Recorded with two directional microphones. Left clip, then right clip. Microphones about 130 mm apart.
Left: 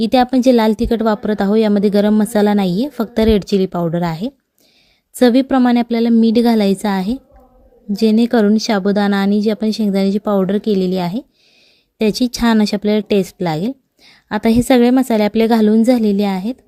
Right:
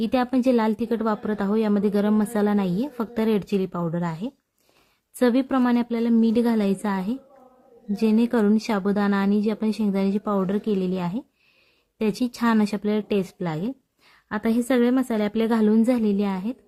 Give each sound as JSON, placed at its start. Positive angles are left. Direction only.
{"t": 0.0, "sound": "a woman's voice", "side_deg": 40}